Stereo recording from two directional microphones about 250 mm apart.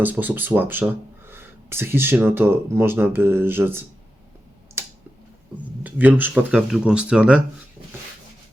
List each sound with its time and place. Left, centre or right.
0.0 s speech: centre
5.8 s speech: centre